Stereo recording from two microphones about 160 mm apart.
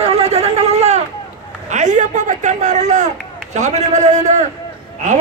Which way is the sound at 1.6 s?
50° right (ahead or behind).